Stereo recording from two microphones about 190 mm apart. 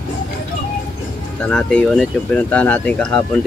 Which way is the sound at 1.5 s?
5° left (ahead or behind).